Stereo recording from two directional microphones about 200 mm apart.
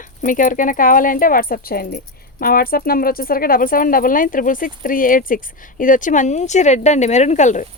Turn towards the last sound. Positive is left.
turn(degrees=35)  # may be behind; listen again after turning